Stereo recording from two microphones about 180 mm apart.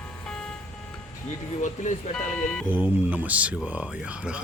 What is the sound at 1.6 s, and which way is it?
Speech, 45° left (ahead or behind).